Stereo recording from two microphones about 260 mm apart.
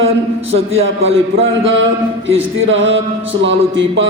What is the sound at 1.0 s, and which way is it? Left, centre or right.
A man's voice, right.